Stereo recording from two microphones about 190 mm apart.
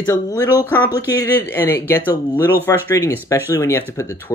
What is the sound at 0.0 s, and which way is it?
Speech, 15° left (ahead or behind).